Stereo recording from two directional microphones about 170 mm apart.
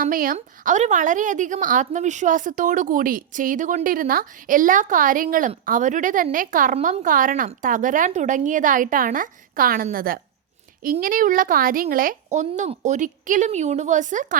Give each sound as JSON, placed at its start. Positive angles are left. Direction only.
{"t": 0.0, "sound": "a woman's voice", "side_deg": -55}